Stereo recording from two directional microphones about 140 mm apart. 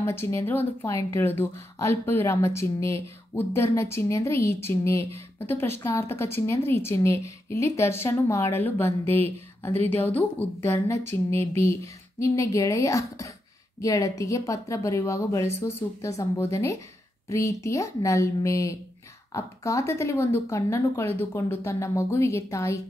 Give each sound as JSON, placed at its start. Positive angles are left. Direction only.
{"t": 0.0, "sound": "a woman's voice", "side_deg": 15}